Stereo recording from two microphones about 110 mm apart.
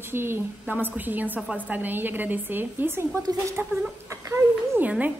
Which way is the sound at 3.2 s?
35° right (ahead or behind).